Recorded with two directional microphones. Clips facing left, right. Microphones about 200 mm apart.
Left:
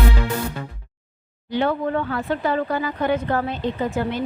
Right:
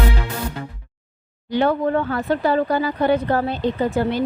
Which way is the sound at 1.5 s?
40° right (ahead or behind).